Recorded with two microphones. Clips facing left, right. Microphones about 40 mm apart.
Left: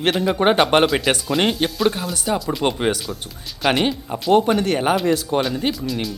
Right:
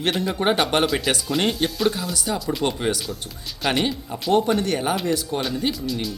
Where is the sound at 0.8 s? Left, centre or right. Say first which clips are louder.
Left 4 dB; centre.